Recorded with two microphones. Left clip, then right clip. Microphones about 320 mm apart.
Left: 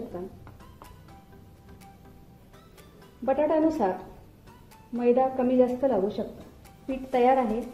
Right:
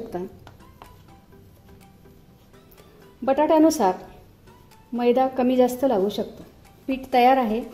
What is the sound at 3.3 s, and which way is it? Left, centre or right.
Speech, right.